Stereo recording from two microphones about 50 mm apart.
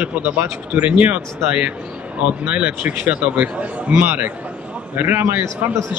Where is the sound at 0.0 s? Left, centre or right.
Right.